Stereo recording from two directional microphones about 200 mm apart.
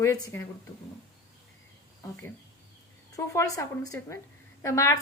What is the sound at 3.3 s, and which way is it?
A woman's voice, 15° left (ahead or behind).